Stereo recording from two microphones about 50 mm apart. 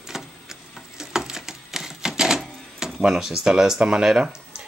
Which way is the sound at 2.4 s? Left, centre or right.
Centre.